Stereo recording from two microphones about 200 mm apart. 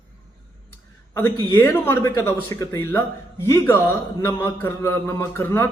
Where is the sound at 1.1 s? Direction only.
10° left (ahead or behind).